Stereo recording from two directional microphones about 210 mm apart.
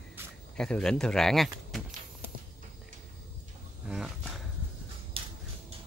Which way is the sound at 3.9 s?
Centre (ahead or behind).